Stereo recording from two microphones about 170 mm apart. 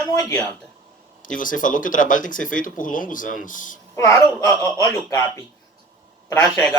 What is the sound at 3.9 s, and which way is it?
A woman's voice, 20° left (ahead or behind).